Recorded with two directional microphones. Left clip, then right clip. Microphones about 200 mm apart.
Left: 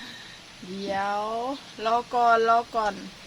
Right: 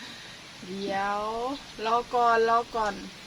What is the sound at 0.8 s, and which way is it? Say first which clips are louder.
Speech: left 1 dB; 25° left (ahead or behind).